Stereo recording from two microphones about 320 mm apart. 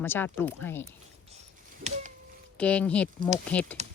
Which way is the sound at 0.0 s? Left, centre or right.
Centre.